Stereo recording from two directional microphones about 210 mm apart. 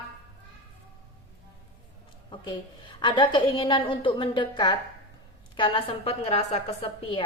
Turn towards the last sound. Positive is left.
turn(degrees=25)  # may be behind; listen again after turning